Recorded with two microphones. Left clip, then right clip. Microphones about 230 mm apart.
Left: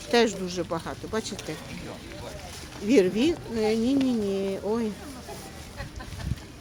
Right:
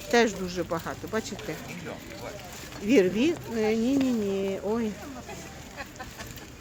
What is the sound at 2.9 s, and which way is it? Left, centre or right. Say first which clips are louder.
Speech: left 1 dB; centre.